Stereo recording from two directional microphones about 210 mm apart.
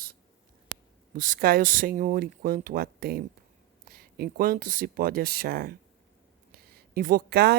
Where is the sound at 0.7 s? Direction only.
90° right.